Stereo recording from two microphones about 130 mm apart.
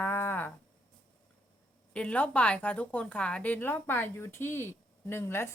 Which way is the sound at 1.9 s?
10° left (ahead or behind).